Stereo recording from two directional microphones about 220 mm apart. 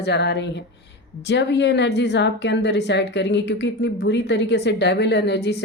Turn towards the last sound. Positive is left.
turn(degrees=50)  # may be behind; listen again after turning